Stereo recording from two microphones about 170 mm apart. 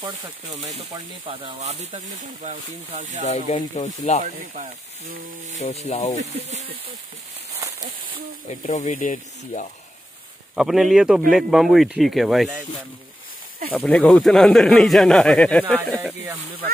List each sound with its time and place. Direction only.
0.5 s speech: 45° right (ahead or behind)
0.9 s speech: 30° right (ahead or behind)
3.3 s speech: 45° left (ahead or behind)
5.9 s speech: 40° left (ahead or behind)
6.1 s speech: 40° right (ahead or behind)
8.6 s speech: 45° left (ahead or behind)
10.5 s speech: centre (ahead or behind)
13.7 s speech: 5° left (ahead or behind)